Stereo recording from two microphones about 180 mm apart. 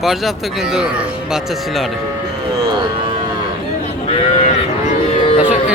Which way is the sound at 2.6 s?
25° right (ahead or behind).